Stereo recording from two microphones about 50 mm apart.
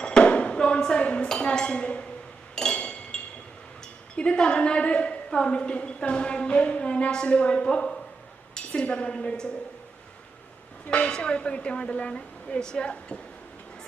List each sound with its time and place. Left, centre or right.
0.0 s chink: centre
4.1 s a woman's voice: centre
10.8 s a woman's voice: centre